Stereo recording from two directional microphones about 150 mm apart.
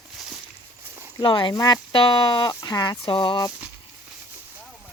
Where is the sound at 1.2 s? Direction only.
35° left (ahead or behind).